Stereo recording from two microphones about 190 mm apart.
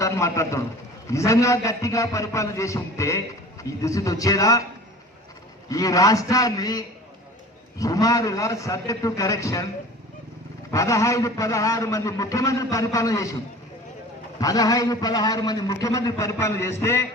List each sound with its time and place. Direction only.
0.0 s a man's voice: 15° left (ahead or behind)
5.6 s a man's voice: 20° left (ahead or behind)
10.7 s a man's voice: 15° left (ahead or behind)
14.4 s a man's voice: 20° left (ahead or behind)